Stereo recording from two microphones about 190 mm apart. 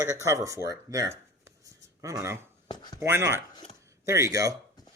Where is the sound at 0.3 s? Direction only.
15° right (ahead or behind).